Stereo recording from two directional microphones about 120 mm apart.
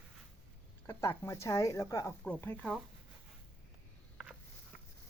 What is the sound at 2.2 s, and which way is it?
Speech, 15° left (ahead or behind).